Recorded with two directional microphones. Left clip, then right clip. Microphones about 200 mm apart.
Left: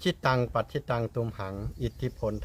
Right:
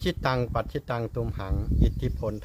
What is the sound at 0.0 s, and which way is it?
Speech, 5° right (ahead or behind).